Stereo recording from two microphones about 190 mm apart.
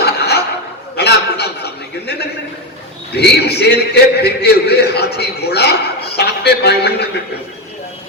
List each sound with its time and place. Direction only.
0.0 s chuckle: 60° left (ahead or behind)
0.9 s a sound: 60° left (ahead or behind)
3.2 s a man's voice: 60° left (ahead or behind)
6.1 s music: 60° left (ahead or behind)